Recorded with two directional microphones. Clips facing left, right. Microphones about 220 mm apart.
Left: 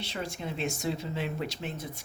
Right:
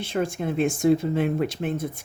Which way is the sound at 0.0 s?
50° right (ahead or behind).